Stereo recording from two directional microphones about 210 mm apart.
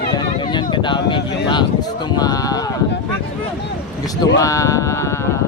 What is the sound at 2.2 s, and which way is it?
Speech, 20° left (ahead or behind).